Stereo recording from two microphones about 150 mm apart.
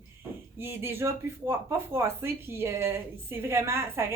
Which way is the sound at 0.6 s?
15° right (ahead or behind).